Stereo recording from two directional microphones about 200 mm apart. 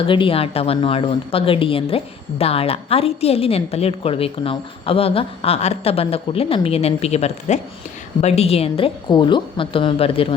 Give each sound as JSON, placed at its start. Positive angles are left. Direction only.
{"t": 0.0, "sound": "a woman's voice", "side_deg": 25}